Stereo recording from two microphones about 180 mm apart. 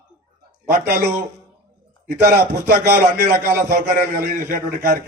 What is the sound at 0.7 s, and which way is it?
Speech, 60° right (ahead or behind).